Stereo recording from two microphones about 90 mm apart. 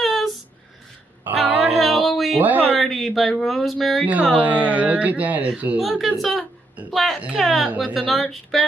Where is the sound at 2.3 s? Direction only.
20° right (ahead or behind).